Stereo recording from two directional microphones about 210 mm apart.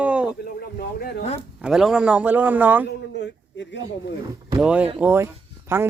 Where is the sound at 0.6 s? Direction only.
45° left (ahead or behind).